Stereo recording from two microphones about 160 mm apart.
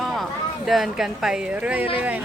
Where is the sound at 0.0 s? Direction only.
Centre (ahead or behind).